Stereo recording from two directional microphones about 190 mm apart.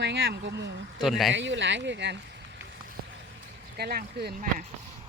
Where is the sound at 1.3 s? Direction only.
75° right (ahead or behind).